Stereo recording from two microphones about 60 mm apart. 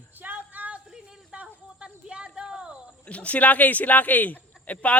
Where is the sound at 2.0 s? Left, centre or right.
Centre.